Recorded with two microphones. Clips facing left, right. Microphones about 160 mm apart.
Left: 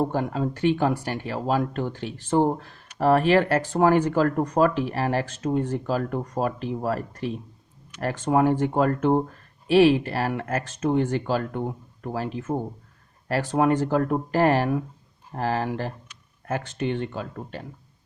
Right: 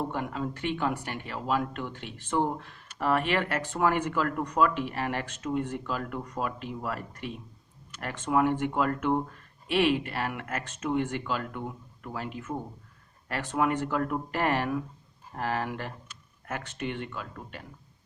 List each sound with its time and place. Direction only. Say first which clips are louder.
0.0 s speech: left 7 dB; 35° left (ahead or behind)